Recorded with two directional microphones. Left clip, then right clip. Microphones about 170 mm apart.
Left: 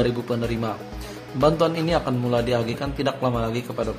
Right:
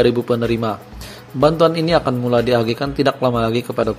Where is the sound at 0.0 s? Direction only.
35° right (ahead or behind).